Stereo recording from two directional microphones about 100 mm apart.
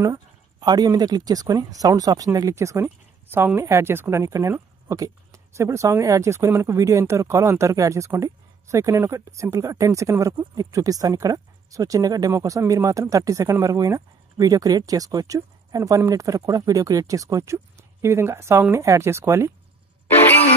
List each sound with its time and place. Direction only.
0.0 s speech: 40° right (ahead or behind)